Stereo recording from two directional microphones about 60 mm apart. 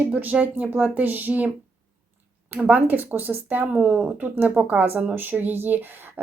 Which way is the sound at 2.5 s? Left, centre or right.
Right.